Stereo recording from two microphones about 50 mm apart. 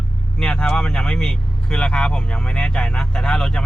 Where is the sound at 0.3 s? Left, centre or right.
Left.